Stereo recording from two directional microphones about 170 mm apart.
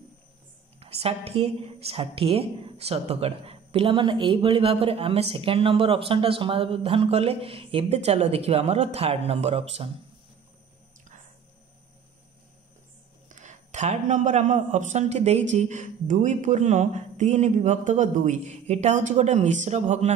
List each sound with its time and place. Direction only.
0.7 s a woman's voice: 35° right (ahead or behind)
13.3 s a man's voice: 45° right (ahead or behind)